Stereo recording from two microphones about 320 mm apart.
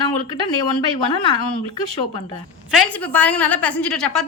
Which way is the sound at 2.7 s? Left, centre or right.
Centre.